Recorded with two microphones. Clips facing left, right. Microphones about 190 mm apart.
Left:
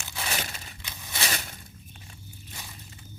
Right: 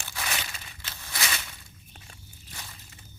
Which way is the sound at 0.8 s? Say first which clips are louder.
Even; 15° left (ahead or behind).